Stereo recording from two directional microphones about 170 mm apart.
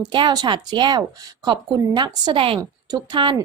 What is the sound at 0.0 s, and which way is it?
A woman's voice, 25° right (ahead or behind).